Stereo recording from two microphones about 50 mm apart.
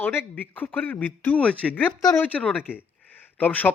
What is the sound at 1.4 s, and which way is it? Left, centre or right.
Speech, left.